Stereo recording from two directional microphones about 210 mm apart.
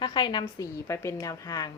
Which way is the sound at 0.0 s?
20° left (ahead or behind).